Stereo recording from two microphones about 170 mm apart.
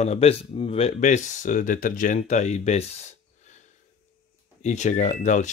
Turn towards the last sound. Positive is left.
turn(degrees=45)  # may be behind; listen again after turning